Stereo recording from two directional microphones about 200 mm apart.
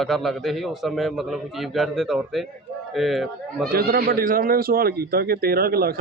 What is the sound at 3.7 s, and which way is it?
Speech, 50° right (ahead or behind).